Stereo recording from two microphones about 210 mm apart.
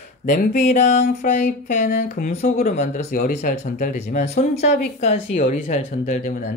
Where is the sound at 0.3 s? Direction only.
45° left (ahead or behind).